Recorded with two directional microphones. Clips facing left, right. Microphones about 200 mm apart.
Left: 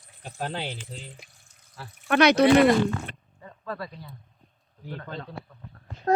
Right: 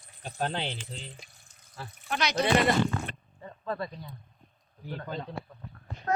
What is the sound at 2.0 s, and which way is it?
Speech, 60° left (ahead or behind).